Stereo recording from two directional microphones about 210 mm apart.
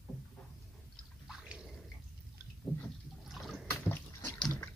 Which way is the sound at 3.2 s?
Centre (ahead or behind).